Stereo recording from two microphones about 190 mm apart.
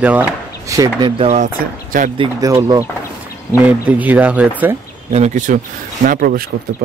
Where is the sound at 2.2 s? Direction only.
20° right (ahead or behind).